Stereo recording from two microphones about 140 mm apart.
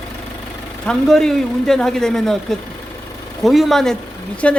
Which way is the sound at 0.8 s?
5° left (ahead or behind).